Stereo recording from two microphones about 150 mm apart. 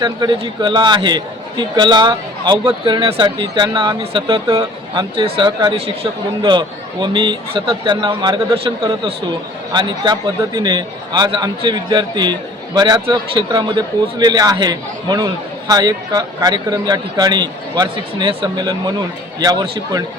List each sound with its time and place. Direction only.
0.0 s a man's voice: 30° right (ahead or behind)
5.7 s a man's voice: 40° right (ahead or behind)
9.7 s a man's voice: 30° right (ahead or behind)